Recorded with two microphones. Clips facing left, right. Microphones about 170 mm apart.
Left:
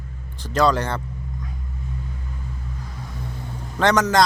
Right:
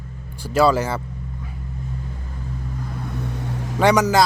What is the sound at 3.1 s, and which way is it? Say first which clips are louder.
Vehicle: right 5 dB; 75° right (ahead or behind).